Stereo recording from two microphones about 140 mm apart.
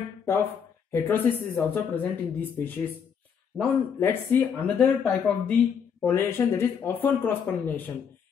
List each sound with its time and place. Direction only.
0.2 s a sound: 15° left (ahead or behind)
0.9 s speech: 15° left (ahead or behind)
4.7 s speech: centre (ahead or behind)
6.0 s speech: 15° left (ahead or behind)